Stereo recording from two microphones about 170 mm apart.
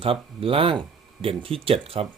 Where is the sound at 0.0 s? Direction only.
35° right (ahead or behind).